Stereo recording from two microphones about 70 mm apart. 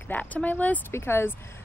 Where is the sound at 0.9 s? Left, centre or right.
Left.